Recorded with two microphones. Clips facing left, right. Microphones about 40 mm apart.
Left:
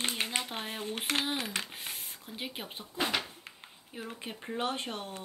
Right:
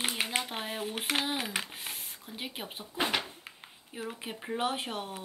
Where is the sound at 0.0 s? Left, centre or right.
Centre.